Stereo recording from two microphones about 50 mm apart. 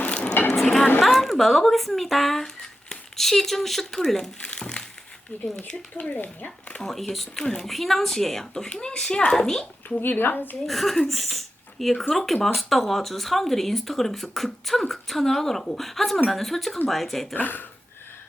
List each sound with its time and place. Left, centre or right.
0.1 s a sound: centre
0.5 s a sound: centre
1.0 s speech: centre
4.4 s speech: left
6.0 s speech: left
6.8 s speech: centre
10.0 s speech: left
10.7 s speech: centre
17.3 s speech: left